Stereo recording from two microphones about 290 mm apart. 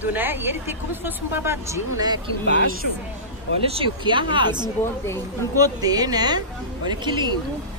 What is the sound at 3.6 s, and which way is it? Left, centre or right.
A woman's voice, centre.